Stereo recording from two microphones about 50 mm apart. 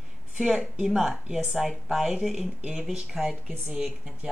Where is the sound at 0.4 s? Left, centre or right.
Centre.